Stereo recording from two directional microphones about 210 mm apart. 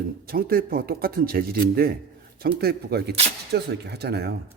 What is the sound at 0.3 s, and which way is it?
Speech, 45° right (ahead or behind).